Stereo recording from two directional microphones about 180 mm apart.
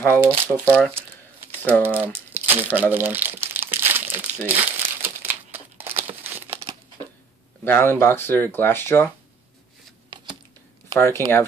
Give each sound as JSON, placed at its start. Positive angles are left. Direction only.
{"t": 0.1, "sound": "speech", "side_deg": -15}
{"t": 0.7, "sound": "speech", "side_deg": 5}
{"t": 1.7, "sound": "speech", "side_deg": -10}
{"t": 2.3, "sound": "crumpling", "side_deg": -10}
{"t": 6.6, "sound": "a sound", "side_deg": -20}
{"t": 7.6, "sound": "speech", "side_deg": 10}
{"t": 10.0, "sound": "typing", "side_deg": -25}
{"t": 11.0, "sound": "speech", "side_deg": 15}